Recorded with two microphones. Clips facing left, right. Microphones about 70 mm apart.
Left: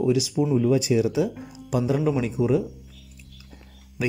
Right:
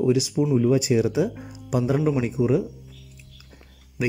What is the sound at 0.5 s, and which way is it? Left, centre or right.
Speech, right.